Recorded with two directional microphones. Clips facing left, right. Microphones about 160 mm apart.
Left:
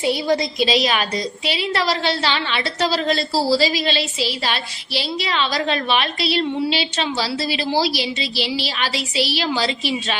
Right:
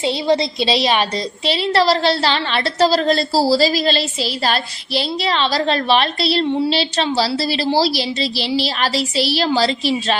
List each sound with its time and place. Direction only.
0.0 s a woman's voice: 25° right (ahead or behind)